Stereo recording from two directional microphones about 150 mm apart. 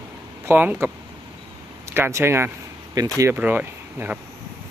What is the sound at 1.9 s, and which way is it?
Speech, 15° right (ahead or behind).